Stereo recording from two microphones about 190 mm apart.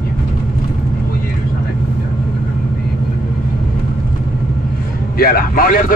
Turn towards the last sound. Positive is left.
turn(degrees=50)  # may be behind; listen again after turning